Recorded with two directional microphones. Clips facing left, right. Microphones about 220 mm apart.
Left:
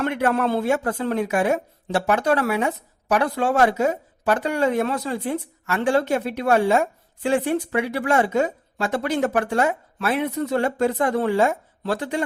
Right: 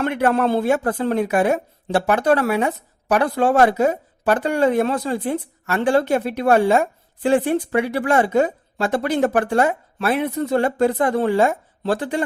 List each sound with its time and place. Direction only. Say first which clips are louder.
0.0 s speech: right 3 dB; 35° right (ahead or behind)